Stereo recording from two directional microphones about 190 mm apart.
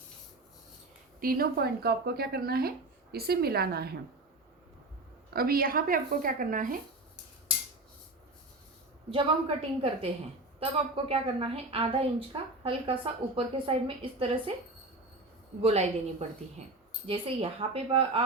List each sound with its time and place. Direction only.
1.2 s speech: 50° right (ahead or behind)
5.3 s a woman's voice: 50° right (ahead or behind)
9.0 s a woman's voice: 30° right (ahead or behind)
16.6 s a woman's voice: 35° right (ahead or behind)